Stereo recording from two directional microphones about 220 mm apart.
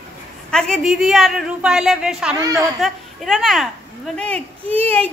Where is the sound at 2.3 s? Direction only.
15° right (ahead or behind).